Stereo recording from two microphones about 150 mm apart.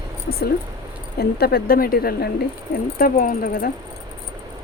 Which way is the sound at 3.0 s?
75° left (ahead or behind).